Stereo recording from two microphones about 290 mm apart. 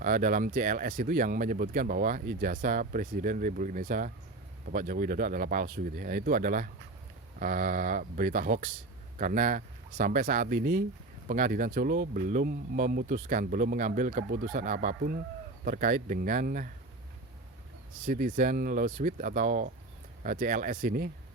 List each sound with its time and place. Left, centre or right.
0.0 s speech: right
18.0 s speech: right